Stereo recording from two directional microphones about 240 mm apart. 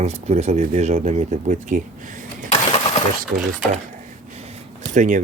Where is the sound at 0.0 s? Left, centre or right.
Right.